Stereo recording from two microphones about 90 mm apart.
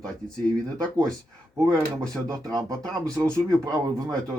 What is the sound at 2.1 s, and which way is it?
Speech, 40° right (ahead or behind).